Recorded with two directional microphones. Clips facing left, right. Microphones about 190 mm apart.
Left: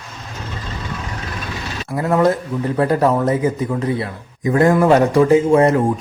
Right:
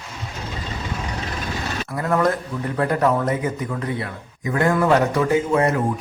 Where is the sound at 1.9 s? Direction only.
25° left (ahead or behind).